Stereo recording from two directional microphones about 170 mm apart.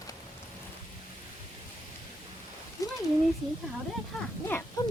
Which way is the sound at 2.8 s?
20° left (ahead or behind).